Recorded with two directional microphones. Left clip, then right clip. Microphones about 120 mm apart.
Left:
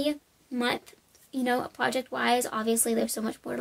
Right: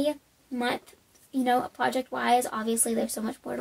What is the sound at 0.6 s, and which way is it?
Speech, 20° left (ahead or behind).